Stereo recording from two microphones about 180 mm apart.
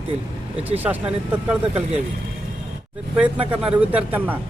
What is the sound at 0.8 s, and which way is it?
A man's voice, 10° right (ahead or behind).